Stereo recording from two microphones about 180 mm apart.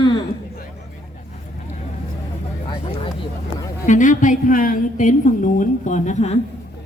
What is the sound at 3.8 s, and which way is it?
A woman's voice, 45° left (ahead or behind).